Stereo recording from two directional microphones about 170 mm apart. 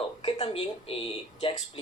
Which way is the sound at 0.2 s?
30° left (ahead or behind).